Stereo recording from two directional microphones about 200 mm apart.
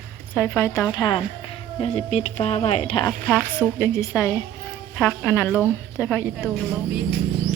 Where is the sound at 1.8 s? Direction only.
35° left (ahead or behind).